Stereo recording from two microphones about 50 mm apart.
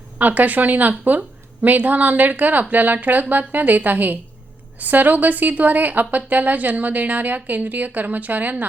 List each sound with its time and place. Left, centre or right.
0.2 s a woman's voice: right